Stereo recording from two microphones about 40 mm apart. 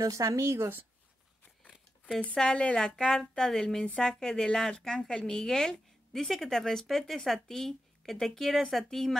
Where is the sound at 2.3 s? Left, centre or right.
Centre.